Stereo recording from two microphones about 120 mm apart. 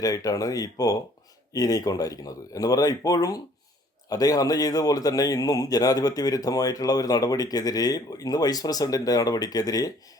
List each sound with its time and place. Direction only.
0.0 s speech: 30° left (ahead or behind)